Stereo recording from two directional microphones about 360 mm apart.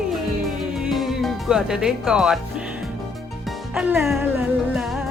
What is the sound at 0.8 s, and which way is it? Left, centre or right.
Music, centre.